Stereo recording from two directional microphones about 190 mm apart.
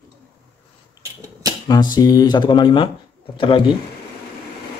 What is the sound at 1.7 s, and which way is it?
Speech, 20° left (ahead or behind).